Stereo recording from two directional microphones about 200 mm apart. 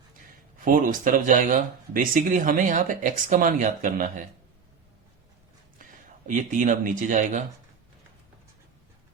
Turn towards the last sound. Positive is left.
turn(degrees=-40)  # may be behind; listen again after turning